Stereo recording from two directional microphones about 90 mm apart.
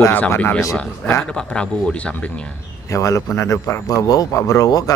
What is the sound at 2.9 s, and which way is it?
Speech, 35° left (ahead or behind).